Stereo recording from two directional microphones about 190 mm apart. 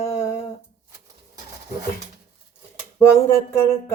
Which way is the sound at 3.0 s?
15° left (ahead or behind).